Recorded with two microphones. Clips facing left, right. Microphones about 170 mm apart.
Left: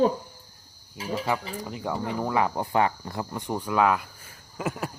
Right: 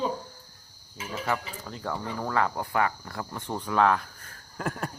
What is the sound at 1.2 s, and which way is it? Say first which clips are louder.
Speech: right 1 dB; 15° left (ahead or behind).